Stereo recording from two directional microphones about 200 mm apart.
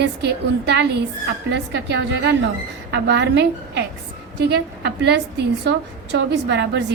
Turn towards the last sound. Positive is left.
turn(degrees=-60)  # may be behind; listen again after turning